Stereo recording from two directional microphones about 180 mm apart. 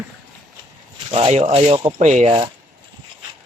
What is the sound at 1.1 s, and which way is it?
Speech, 30° right (ahead or behind).